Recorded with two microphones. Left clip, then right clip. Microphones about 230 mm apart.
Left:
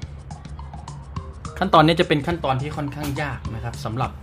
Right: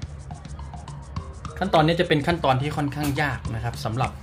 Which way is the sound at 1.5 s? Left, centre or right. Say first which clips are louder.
Left 4 dB; centre.